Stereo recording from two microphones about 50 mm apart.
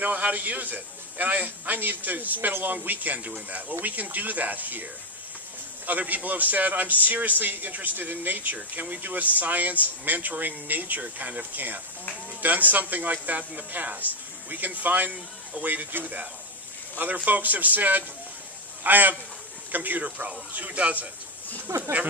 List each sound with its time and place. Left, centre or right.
0.0 s a man's voice: right
5.9 s a man's voice: right
21.5 s speech: right